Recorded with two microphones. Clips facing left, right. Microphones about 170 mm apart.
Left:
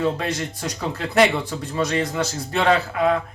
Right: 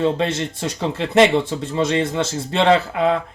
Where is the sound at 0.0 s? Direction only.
25° right (ahead or behind).